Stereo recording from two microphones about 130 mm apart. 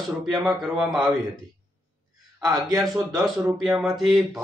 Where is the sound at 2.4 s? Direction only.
30° right (ahead or behind).